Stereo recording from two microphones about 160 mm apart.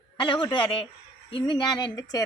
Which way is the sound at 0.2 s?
30° left (ahead or behind).